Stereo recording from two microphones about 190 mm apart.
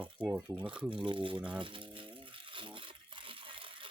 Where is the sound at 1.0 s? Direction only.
25° right (ahead or behind).